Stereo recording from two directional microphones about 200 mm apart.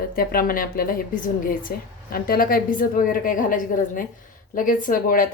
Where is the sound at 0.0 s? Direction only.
45° left (ahead or behind).